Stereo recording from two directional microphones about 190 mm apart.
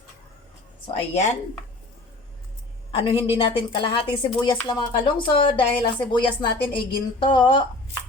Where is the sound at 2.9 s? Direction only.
30° left (ahead or behind).